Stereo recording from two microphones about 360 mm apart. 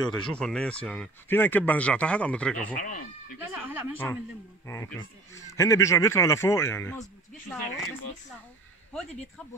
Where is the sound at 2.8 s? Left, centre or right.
Left.